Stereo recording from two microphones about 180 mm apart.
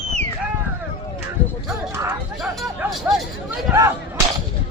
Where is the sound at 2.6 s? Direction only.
Centre (ahead or behind).